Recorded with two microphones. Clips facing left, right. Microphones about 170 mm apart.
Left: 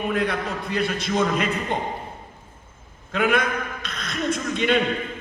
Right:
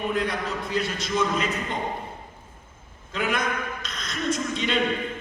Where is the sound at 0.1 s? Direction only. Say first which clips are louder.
Left 2 dB; 60° left (ahead or behind).